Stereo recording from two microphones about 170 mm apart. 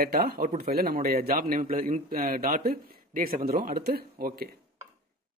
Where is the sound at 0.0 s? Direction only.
65° right (ahead or behind).